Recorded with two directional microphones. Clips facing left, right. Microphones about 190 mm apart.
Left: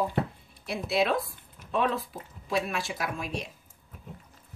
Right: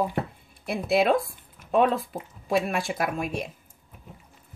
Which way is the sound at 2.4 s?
55° right (ahead or behind).